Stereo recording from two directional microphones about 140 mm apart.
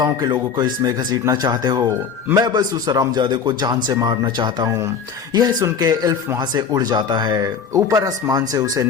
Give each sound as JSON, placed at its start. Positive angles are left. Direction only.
{"t": 0.0, "sound": "a man's voice", "side_deg": -30}